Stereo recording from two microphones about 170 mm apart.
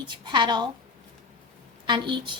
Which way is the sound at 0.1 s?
25° right (ahead or behind).